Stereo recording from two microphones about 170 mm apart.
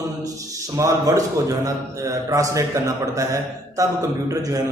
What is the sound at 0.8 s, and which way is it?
A man's voice, 20° right (ahead or behind).